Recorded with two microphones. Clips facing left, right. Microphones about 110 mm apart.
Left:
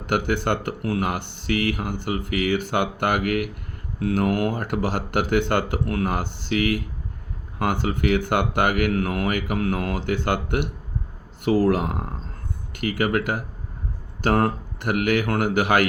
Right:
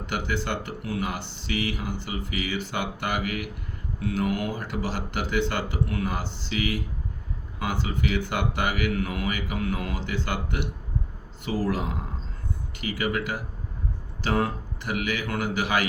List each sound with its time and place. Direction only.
0.0 s speech: 55° left (ahead or behind)